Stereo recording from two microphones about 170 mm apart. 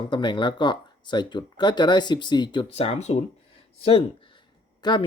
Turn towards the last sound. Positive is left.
turn(degrees=25)  # may be behind; listen again after turning